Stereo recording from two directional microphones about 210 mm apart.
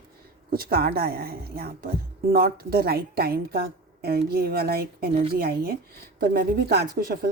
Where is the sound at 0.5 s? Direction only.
45° right (ahead or behind).